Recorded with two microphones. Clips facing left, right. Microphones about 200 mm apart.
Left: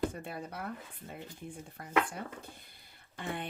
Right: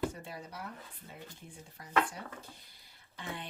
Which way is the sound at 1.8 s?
55° left (ahead or behind).